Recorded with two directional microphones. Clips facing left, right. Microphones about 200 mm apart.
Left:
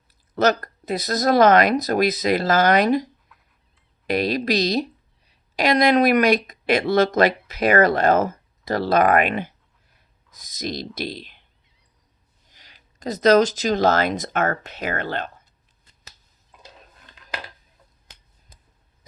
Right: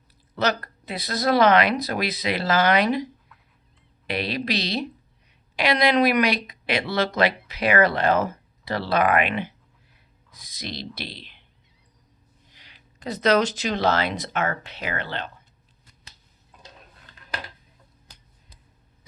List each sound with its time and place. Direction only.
0.3 s speech: 45° left (ahead or behind)
12.5 s speech: 40° left (ahead or behind)